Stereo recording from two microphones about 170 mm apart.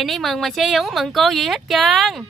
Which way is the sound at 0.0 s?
Centre (ahead or behind).